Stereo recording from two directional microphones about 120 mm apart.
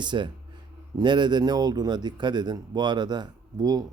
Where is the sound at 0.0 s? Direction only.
40° right (ahead or behind).